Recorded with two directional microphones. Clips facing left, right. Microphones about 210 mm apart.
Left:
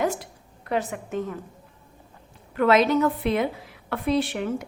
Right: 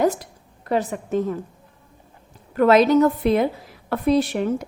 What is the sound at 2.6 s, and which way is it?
A woman's voice, 40° right (ahead or behind).